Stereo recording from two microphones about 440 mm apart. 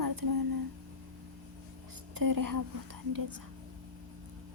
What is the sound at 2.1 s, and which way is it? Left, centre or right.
A woman's voice, right.